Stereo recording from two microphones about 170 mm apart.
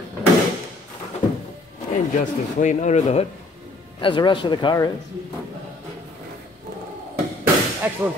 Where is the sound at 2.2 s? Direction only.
45° left (ahead or behind).